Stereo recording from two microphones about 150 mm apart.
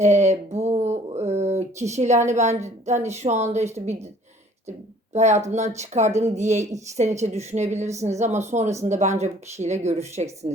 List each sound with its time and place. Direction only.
0.0 s a woman's voice: 50° right (ahead or behind)
5.1 s a woman's voice: 50° right (ahead or behind)
10.4 s a woman's voice: 35° right (ahead or behind)